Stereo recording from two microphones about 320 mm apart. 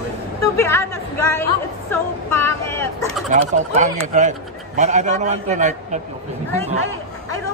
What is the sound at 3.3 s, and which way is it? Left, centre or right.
A man's voice, right.